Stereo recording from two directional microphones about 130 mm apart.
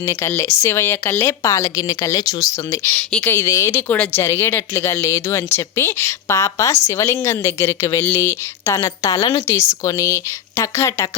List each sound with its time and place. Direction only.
0.0 s a woman's voice: 20° left (ahead or behind)
2.9 s a woman's voice: 10° left (ahead or behind)